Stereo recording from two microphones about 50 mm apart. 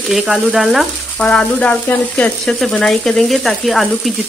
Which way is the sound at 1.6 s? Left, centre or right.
Left.